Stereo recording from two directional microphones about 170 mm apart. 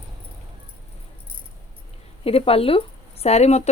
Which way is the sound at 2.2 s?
35° left (ahead or behind).